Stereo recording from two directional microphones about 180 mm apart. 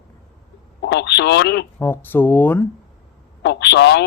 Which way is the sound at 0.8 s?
70° left (ahead or behind).